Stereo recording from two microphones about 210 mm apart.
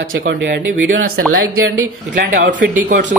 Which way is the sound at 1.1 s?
80° right.